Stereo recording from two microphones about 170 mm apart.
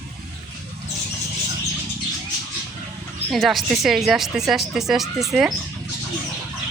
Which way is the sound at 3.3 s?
Centre (ahead or behind).